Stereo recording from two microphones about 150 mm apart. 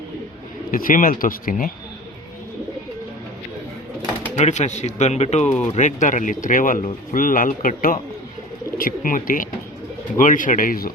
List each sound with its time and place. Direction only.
0.7 s speech: 65° left (ahead or behind)
4.4 s speech: 50° left (ahead or behind); by 10.9 s 75° left (ahead or behind)